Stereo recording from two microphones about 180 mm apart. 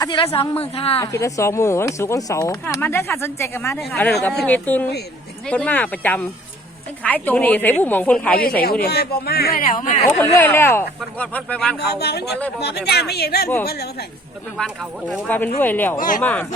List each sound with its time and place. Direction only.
0.0 s a woman's voice: 30° left (ahead or behind)
0.9 s speech: 15° left (ahead or behind)
8.8 s speech: 60° left (ahead or behind)
10.3 s speech: 15° left (ahead or behind)
11.8 s speech: 65° left (ahead or behind)
14.6 s speech: centre (ahead or behind)
16.0 s speech: 50° left (ahead or behind)
16.2 s speech: 10° left (ahead or behind)